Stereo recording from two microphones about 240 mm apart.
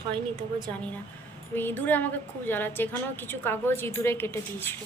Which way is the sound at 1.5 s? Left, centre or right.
Centre.